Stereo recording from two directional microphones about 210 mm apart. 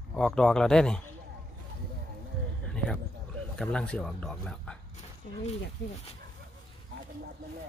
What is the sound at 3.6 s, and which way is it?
Speech, 5° left (ahead or behind).